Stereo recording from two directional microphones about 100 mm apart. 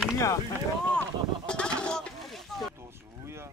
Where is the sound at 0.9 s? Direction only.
10° left (ahead or behind).